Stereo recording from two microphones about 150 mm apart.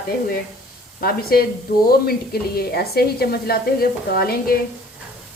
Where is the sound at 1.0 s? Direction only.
90° left.